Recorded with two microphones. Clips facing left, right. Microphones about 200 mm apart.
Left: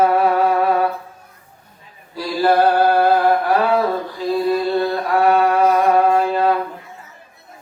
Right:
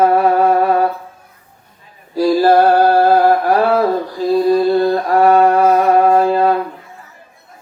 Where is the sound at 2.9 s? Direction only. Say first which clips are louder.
Right 4 dB; 40° right (ahead or behind).